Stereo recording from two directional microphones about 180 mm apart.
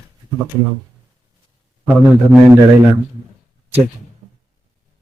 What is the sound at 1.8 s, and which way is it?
Speech, 10° right (ahead or behind).